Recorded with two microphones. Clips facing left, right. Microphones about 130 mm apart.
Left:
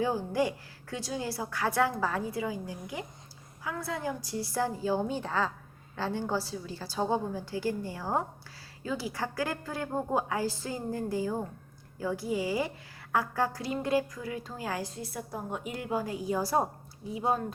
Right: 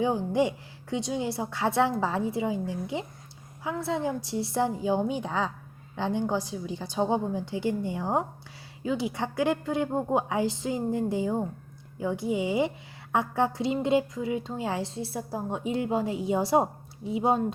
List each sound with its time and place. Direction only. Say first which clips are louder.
0.0 s a woman's voice: right 3 dB; 20° right (ahead or behind)